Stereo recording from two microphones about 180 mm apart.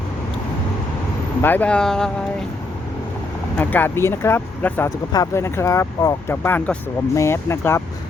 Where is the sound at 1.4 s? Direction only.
10° left (ahead or behind).